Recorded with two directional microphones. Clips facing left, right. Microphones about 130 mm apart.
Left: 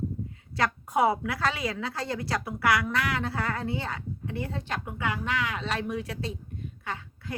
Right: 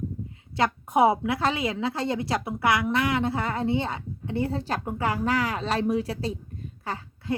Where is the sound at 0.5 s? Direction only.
25° right (ahead or behind).